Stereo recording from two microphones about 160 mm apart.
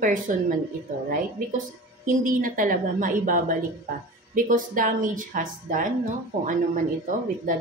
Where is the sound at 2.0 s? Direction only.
60° right (ahead or behind).